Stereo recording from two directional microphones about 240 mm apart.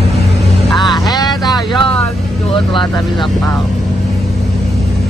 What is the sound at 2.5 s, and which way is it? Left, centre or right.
Vehicle, centre.